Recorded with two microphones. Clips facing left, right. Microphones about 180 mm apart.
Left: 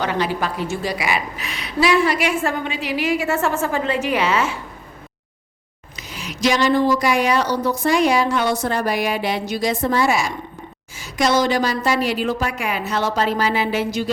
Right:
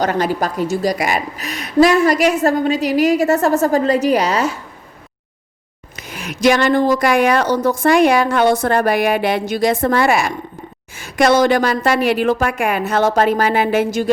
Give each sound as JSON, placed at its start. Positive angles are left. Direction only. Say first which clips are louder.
{"t": 0.0, "sound": "a woman's voice", "louder": "right 4 dB", "side_deg": -45}
{"t": 6.0, "sound": "a woman's voice", "louder": "right 4 dB", "side_deg": -55}